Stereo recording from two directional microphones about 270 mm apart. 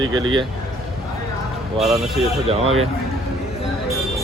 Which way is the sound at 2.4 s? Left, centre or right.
Right.